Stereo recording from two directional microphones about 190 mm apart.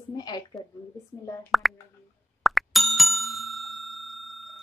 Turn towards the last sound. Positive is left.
turn(degrees=0)  # may be behind; listen again after turning